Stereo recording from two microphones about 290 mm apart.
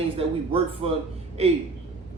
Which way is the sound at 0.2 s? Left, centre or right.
Centre.